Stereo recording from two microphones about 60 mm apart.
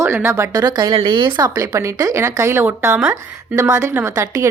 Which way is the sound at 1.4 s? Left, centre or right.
Right.